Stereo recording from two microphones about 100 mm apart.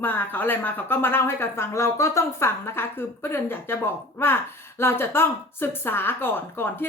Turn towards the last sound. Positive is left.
turn(degrees=20)  # may be behind; listen again after turning